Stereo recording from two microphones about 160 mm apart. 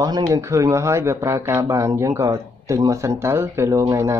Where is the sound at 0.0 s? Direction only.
20° right (ahead or behind).